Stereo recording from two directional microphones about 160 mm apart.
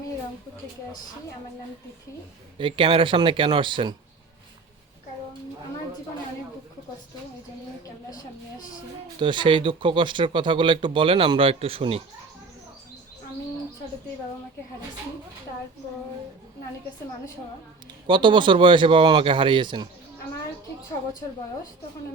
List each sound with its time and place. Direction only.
2.6 s speech: 30° right (ahead or behind)
9.1 s speech: 30° right (ahead or behind)
18.0 s speech: 30° right (ahead or behind)